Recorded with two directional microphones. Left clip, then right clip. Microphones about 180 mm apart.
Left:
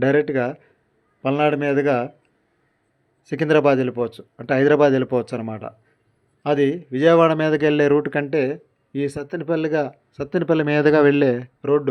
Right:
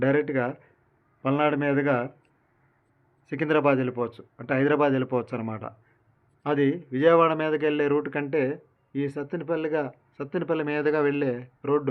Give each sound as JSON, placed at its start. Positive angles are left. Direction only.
{"t": 0.0, "sound": "a man's voice", "side_deg": 35}
{"t": 3.2, "sound": "a man's voice", "side_deg": 30}